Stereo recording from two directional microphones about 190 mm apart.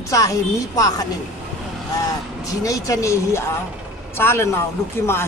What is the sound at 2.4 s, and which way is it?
Speech, 20° left (ahead or behind).